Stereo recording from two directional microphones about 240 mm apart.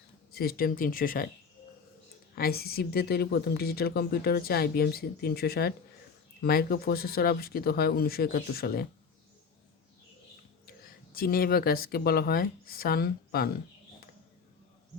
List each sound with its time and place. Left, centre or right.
0.3 s speech: left
2.3 s speech: left
10.8 s speech: left